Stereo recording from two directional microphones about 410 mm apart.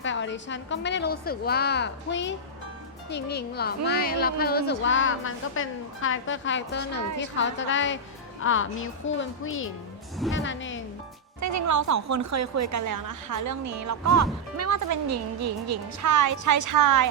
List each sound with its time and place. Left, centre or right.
0.0 s speech: left
11.3 s a woman's voice: right